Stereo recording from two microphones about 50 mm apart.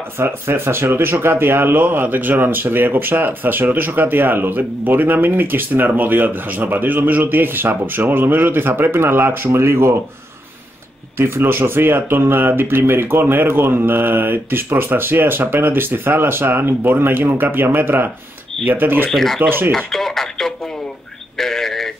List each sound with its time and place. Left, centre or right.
0.2 s speech: right
11.1 s speech: right
19.0 s speech: centre
19.9 s radio: centre
21.4 s a sound: centre